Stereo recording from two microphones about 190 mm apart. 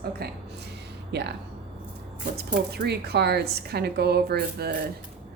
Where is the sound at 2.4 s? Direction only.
55° right (ahead or behind).